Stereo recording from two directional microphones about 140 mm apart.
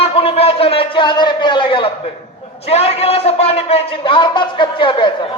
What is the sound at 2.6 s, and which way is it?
A man's voice, 45° left (ahead or behind).